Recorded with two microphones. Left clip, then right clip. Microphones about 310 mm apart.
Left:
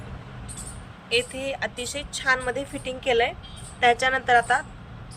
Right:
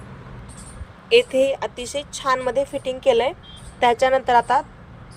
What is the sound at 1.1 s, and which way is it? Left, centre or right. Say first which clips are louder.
A woman's voice: right 10 dB; centre.